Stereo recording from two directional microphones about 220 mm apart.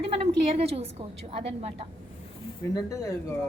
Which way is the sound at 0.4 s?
25° right (ahead or behind).